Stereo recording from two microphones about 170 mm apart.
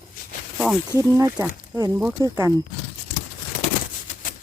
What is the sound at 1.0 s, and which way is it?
Speech, 20° right (ahead or behind).